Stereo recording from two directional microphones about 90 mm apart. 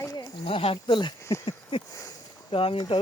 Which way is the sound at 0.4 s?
90° left.